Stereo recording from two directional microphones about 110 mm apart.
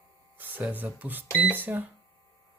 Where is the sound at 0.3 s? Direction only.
15° right (ahead or behind).